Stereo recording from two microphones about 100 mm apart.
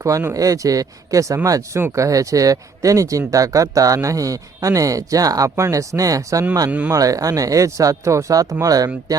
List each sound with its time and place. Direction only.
0.0 s speech: 30° right (ahead or behind)
6.7 s speech: 15° right (ahead or behind)
6.9 s speech: 35° right (ahead or behind)